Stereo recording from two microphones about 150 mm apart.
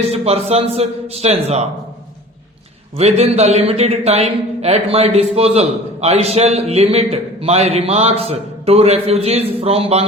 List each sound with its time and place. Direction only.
0.1 s a man's voice: 45° right (ahead or behind)
3.0 s a man's voice: 45° right (ahead or behind)